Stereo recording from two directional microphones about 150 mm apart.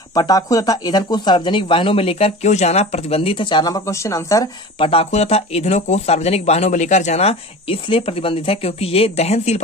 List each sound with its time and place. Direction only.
0.1 s speech: 25° left (ahead or behind)
4.7 s speech: 40° left (ahead or behind)